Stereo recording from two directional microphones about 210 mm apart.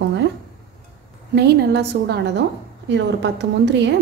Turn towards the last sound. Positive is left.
turn(degrees=-55)  # may be behind; listen again after turning